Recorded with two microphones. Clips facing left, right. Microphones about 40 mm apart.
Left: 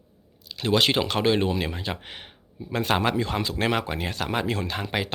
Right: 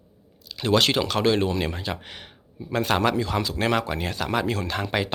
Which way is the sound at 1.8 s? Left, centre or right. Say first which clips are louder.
Right 1 dB; left.